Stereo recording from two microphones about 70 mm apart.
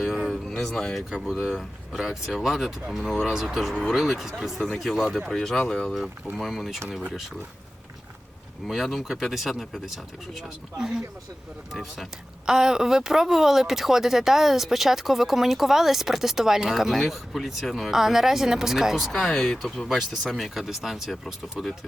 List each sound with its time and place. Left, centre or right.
0.0 s a sound: centre
0.6 s speech: centre
1.1 s speech: centre
6.3 s speech: centre
8.6 s speech: centre
19.1 s speech: centre